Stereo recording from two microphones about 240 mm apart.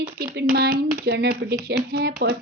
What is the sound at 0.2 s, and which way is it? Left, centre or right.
A woman's voice, right.